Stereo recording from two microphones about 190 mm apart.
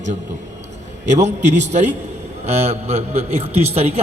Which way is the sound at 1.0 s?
35° right (ahead or behind).